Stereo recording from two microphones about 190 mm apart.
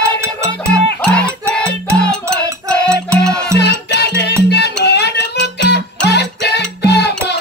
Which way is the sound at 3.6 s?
60° left (ahead or behind).